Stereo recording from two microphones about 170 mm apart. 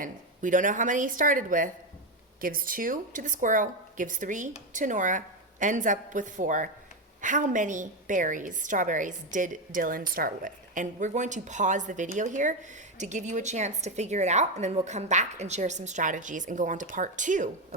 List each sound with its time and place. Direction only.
0.0 s a woman's voice: 50° right (ahead or behind)